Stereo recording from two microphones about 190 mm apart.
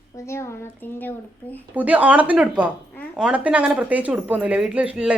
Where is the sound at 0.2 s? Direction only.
15° left (ahead or behind).